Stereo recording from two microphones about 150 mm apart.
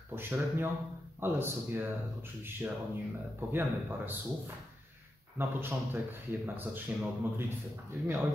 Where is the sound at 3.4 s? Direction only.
15° right (ahead or behind).